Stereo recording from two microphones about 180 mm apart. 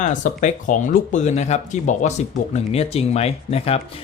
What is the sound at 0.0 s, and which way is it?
Speech, 45° left (ahead or behind).